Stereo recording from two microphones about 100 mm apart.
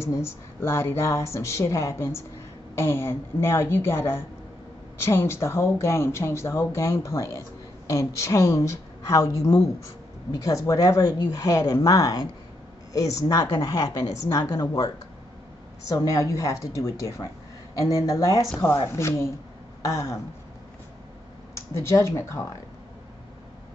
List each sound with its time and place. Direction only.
0.0 s a woman's voice: 25° left (ahead or behind)
15.9 s a woman's voice: 35° left (ahead or behind)
21.5 s speech: 30° left (ahead or behind)